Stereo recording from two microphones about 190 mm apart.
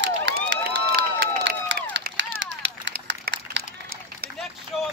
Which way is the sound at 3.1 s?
70° right (ahead or behind).